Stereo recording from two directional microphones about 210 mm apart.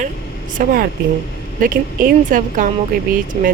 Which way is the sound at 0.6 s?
40° right (ahead or behind).